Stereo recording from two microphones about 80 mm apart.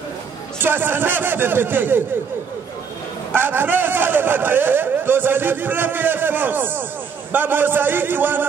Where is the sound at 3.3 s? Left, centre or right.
Right.